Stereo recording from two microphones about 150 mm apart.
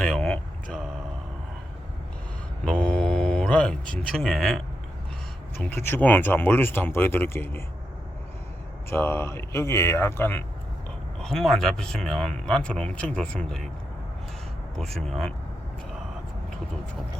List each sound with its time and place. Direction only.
0.0 s vehicle: 5° left (ahead or behind)
2.6 s mantra: 5° left (ahead or behind)
5.6 s speech: 15° left (ahead or behind)
8.9 s speech: 15° left (ahead or behind)
11.2 s speech: centre (ahead or behind)
14.8 s speech: 5° left (ahead or behind)